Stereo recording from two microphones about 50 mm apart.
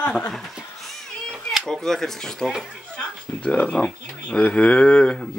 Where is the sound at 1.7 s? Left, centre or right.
Centre.